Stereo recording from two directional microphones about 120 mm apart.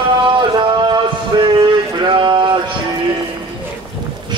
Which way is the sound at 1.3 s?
35° right (ahead or behind).